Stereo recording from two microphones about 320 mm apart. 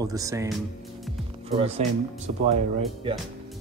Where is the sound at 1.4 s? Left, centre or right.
Centre.